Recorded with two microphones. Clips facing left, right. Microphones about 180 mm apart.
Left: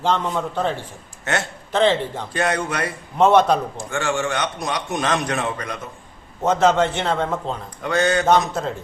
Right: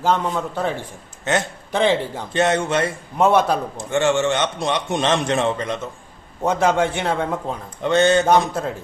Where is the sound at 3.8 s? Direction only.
20° right (ahead or behind).